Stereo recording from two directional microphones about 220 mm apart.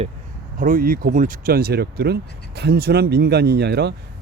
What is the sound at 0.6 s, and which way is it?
Speech, 40° right (ahead or behind).